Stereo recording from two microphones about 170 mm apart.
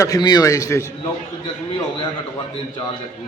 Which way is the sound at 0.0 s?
20° left (ahead or behind).